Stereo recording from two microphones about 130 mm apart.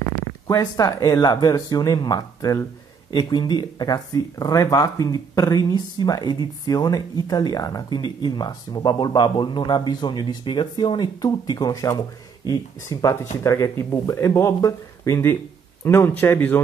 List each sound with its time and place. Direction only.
0.5 s speech: 25° left (ahead or behind)